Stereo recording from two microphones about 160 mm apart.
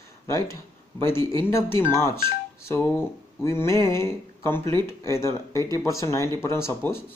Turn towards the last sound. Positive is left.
turn(degrees=15)  # may be behind; listen again after turning